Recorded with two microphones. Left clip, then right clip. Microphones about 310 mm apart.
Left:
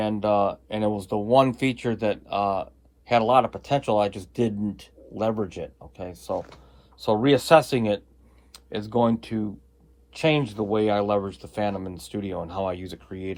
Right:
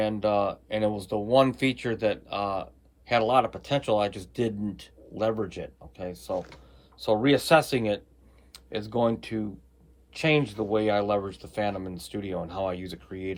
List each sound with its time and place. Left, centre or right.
0.0 s speech: centre